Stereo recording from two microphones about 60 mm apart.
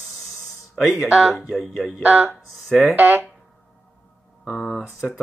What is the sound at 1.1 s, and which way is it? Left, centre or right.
Speech, centre.